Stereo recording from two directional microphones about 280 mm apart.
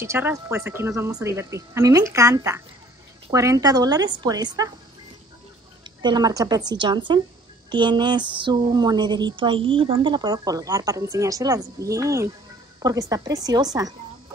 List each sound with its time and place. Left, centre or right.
0.0 s speech: centre
5.9 s speech: centre